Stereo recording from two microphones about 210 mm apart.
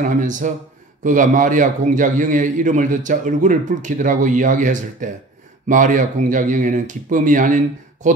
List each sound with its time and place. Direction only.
0.2 s a man's voice: 35° right (ahead or behind)